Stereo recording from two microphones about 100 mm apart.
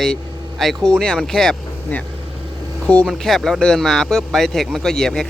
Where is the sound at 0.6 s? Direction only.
5° left (ahead or behind).